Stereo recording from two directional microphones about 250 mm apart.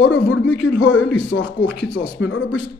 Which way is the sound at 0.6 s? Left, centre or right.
Left.